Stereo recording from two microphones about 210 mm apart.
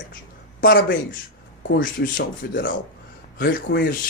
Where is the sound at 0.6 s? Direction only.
60° left (ahead or behind).